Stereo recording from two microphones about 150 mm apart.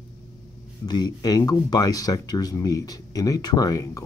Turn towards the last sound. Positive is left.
turn(degrees=20)  # may be behind; listen again after turning